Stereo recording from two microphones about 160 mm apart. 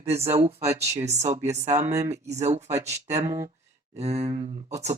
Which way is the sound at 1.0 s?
45° right (ahead or behind).